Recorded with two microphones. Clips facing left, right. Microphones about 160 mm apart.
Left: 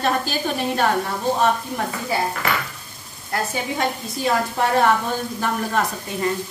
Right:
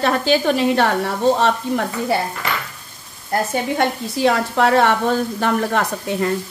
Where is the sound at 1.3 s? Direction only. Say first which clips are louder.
Right 2 dB; 75° right (ahead or behind).